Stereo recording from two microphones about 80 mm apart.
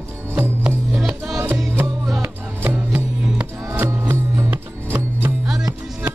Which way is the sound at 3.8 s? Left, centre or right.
Right.